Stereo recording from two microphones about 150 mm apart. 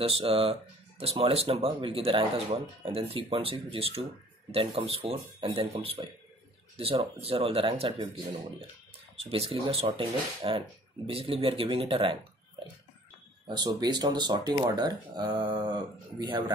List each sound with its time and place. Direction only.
0.0 s speech: 40° right (ahead or behind)
9.1 s speech: 40° right (ahead or behind)